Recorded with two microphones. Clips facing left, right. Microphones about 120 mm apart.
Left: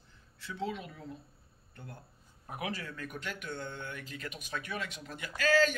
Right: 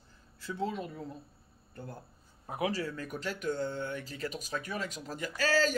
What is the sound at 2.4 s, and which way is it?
Speech, 25° right (ahead or behind).